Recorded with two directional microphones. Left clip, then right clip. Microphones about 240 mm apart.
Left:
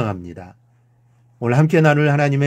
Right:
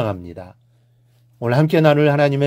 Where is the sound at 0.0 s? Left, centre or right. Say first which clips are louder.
Right 2 dB; right.